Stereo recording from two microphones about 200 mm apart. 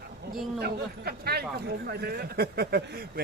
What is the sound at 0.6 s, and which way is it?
Speech, 50° right (ahead or behind).